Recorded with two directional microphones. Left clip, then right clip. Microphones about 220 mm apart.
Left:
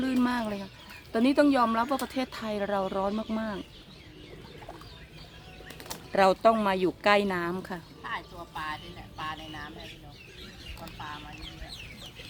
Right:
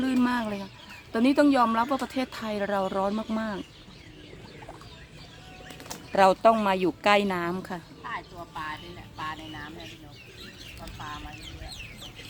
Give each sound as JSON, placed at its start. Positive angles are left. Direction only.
{"t": 0.0, "sound": "chicken", "side_deg": 0}
{"t": 1.1, "sound": "speech", "side_deg": -5}
{"t": 6.1, "sound": "speech", "side_deg": -5}
{"t": 8.0, "sound": "music", "side_deg": 35}